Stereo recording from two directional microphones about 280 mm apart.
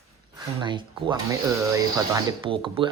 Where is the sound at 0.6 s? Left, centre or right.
Centre.